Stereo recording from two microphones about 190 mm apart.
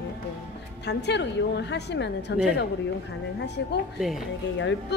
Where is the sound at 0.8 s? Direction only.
65° left (ahead or behind).